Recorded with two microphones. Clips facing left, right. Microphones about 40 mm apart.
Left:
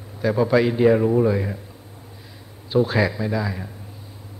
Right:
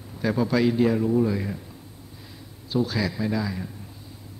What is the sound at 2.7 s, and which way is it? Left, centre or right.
Speech, left.